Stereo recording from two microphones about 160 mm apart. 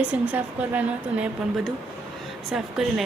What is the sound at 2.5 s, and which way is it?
Speech, 5° right (ahead or behind).